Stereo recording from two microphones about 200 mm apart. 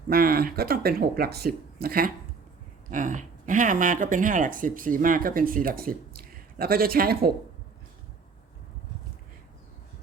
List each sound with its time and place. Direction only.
0.1 s speech: 50° right (ahead or behind)